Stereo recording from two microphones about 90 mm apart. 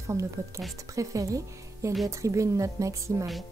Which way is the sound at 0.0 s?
35° right (ahead or behind).